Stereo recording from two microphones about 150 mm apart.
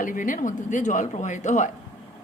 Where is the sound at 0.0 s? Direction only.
60° left (ahead or behind).